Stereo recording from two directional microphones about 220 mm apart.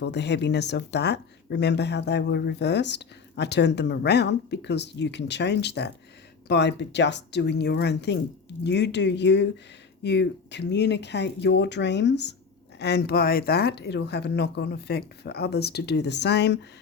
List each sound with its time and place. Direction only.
0.0 s speech: 50° left (ahead or behind)